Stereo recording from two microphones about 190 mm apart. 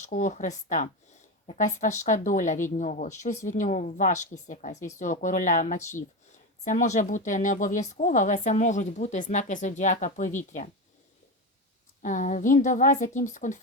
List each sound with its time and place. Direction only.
0.1 s speech: 40° left (ahead or behind)
12.0 s speech: 40° left (ahead or behind)